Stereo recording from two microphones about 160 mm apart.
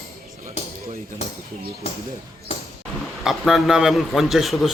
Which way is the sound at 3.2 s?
Centre (ahead or behind).